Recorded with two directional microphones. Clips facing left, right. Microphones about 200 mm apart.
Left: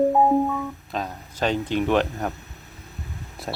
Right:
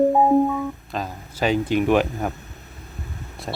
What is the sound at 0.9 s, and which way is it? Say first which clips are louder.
Speech: right 1 dB; centre (ahead or behind).